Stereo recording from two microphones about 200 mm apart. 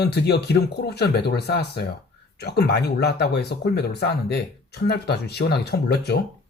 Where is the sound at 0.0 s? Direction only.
55° left (ahead or behind).